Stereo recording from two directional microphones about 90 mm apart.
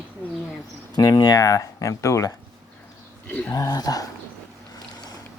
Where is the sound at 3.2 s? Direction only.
15° left (ahead or behind).